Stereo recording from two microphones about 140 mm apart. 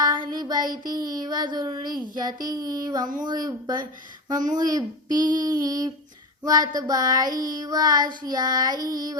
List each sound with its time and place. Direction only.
0.0 s child singing: 30° right (ahead or behind)